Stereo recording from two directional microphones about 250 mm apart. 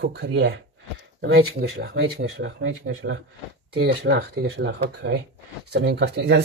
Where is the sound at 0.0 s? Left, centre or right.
Right.